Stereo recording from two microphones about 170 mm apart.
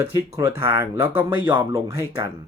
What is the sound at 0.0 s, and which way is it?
Speech, 15° right (ahead or behind).